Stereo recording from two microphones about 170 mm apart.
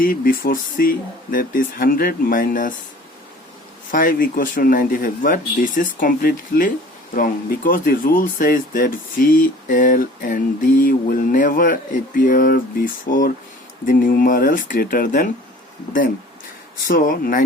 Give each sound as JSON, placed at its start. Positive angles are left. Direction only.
{"t": 0.0, "sound": "speech", "side_deg": 55}
{"t": 3.9, "sound": "speech", "side_deg": 55}
{"t": 16.9, "sound": "speech", "side_deg": 55}